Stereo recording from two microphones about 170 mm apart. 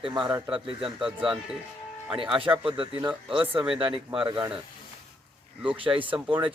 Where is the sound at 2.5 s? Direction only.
5° right (ahead or behind).